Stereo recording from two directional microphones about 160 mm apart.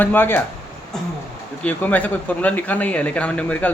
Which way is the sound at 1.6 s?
10° left (ahead or behind).